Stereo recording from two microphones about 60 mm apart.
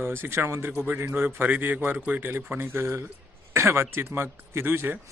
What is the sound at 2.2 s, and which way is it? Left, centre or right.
A man's voice, right.